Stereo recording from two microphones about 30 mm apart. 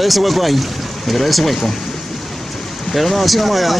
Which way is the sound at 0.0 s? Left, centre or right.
Centre.